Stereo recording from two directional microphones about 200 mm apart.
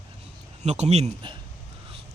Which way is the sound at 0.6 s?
35° right (ahead or behind).